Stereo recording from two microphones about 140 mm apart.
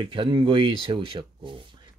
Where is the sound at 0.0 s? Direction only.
35° right (ahead or behind).